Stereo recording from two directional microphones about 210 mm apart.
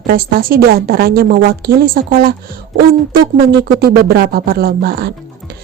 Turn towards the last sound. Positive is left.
turn(degrees=-50)  # may be behind; listen again after turning